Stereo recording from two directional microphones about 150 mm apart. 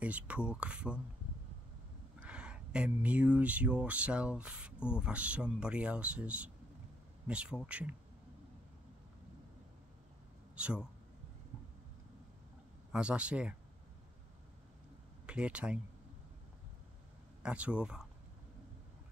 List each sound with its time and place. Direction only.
0.0 s speech: 10° right (ahead or behind)
2.1 s speech: 10° right (ahead or behind)
10.5 s speech: 5° right (ahead or behind)
12.9 s speech: 5° right (ahead or behind)
15.2 s speech: 5° right (ahead or behind)
17.4 s speech: 5° right (ahead or behind)